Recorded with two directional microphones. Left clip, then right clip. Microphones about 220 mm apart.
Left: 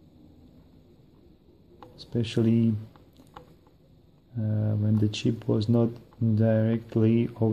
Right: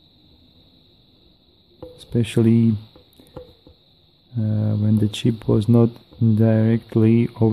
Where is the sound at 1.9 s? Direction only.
30° right (ahead or behind).